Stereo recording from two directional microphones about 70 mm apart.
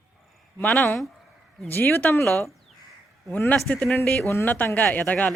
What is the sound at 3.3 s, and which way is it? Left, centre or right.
A woman's voice, left.